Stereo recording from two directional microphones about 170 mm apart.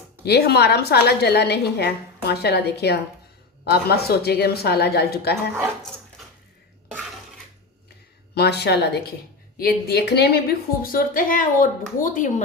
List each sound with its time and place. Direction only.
0.3 s a woman's voice: 70° left (ahead or behind)
8.4 s a woman's voice: 80° left
9.6 s a woman's voice: 65° left (ahead or behind)
10.9 s a woman's voice: 55° left (ahead or behind)